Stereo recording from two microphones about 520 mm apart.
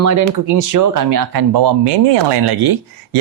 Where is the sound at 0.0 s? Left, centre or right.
Right.